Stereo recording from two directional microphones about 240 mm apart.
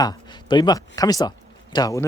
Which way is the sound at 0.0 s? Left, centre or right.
Centre.